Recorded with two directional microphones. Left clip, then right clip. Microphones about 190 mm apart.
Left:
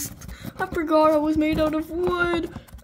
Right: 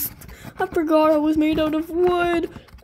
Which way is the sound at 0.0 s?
15° right (ahead or behind).